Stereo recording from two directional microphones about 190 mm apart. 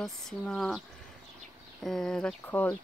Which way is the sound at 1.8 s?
Centre (ahead or behind).